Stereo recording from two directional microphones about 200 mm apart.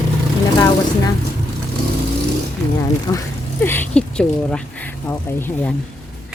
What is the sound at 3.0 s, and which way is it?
Speech, 15° left (ahead or behind).